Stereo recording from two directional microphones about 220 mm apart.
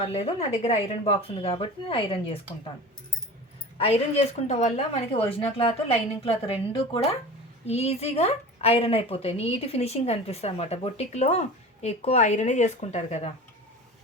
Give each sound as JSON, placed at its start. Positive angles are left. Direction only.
{"t": 0.0, "sound": "a woman's voice", "side_deg": 25}
{"t": 3.8, "sound": "a woman's voice", "side_deg": 30}
{"t": 7.6, "sound": "a woman's voice", "side_deg": 30}